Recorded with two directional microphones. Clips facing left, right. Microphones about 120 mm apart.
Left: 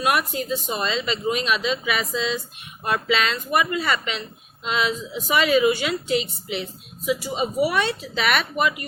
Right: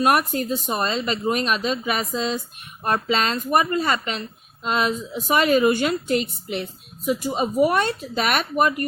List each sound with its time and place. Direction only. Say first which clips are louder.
0.0 s a woman's voice: right 3 dB; 45° right (ahead or behind)